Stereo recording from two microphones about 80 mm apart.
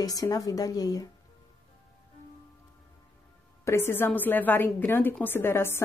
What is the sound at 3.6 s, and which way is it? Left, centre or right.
A woman's voice, left.